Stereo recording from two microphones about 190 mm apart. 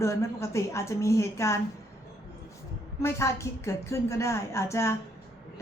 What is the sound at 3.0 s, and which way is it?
A woman's voice, 15° left (ahead or behind).